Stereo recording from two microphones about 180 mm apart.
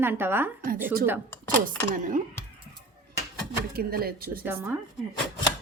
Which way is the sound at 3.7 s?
55° right (ahead or behind).